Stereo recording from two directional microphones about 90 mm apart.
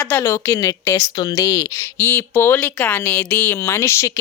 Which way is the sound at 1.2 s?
45° left (ahead or behind).